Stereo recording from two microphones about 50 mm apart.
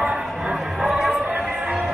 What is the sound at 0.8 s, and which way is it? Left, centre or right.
Chatter, centre.